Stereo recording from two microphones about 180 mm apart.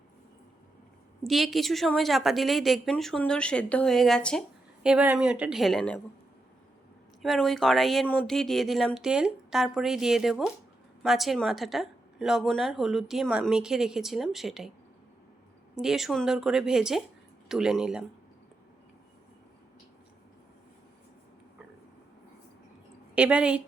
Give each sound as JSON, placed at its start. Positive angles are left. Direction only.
{"t": 1.2, "sound": "a woman's voice", "side_deg": 0}
{"t": 7.2, "sound": "a woman's voice", "side_deg": 0}
{"t": 15.7, "sound": "a woman's voice", "side_deg": -5}
{"t": 23.1, "sound": "a woman's voice", "side_deg": -5}